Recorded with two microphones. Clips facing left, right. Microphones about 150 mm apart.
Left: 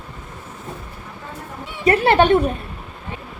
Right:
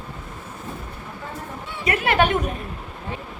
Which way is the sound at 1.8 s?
35° left (ahead or behind).